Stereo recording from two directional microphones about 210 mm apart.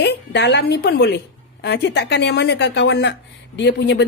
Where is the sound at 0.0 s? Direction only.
55° left (ahead or behind).